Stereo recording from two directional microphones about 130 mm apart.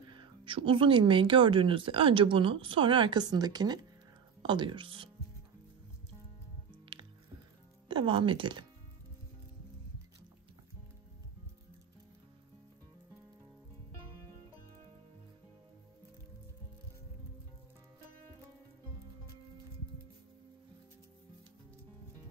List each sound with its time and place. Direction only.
0.1 s speech: 40° right (ahead or behind)
7.9 s speech: 40° right (ahead or behind)